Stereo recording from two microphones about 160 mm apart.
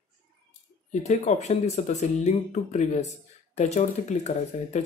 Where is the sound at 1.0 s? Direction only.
45° left (ahead or behind).